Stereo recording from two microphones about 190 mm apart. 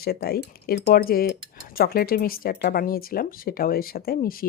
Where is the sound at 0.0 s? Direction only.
55° left (ahead or behind).